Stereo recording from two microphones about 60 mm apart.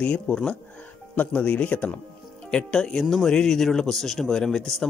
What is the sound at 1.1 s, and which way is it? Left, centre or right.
Speech, left.